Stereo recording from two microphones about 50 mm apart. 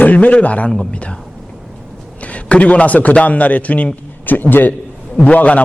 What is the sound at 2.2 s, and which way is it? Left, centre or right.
A man's voice, left.